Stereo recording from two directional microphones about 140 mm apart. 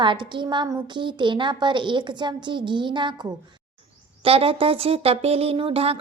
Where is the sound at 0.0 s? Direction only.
35° right (ahead or behind).